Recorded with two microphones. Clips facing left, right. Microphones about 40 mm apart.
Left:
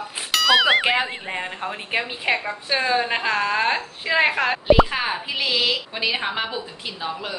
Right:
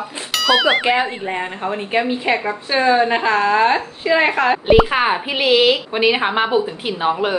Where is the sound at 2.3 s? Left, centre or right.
Centre.